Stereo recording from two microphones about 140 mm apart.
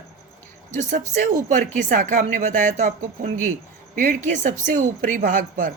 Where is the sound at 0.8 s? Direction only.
65° right (ahead or behind).